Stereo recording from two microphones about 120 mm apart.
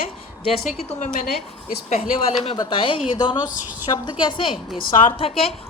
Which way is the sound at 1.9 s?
55° left (ahead or behind).